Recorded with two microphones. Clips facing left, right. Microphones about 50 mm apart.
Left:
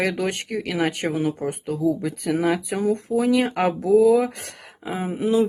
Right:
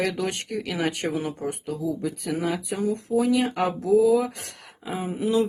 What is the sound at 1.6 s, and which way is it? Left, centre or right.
Speech, left.